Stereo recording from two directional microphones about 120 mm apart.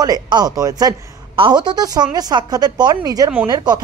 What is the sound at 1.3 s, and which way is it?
Speech, 45° right (ahead or behind).